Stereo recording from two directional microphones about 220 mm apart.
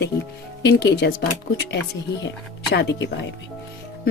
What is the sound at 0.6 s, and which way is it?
Speech, 50° left (ahead or behind).